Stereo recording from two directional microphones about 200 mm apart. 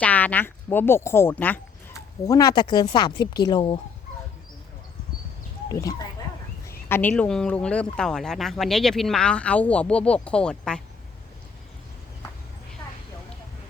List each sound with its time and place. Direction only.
0.0 s speech: 5° left (ahead or behind); by 3.8 s 25° left (ahead or behind)
5.7 s speech: 15° left (ahead or behind)